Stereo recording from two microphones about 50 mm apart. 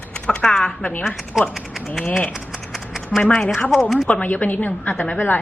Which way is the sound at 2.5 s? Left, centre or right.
Centre.